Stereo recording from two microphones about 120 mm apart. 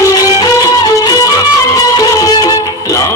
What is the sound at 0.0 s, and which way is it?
Music, 30° left (ahead or behind).